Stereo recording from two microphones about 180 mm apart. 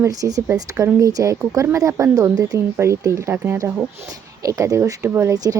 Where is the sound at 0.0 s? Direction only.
20° right (ahead or behind).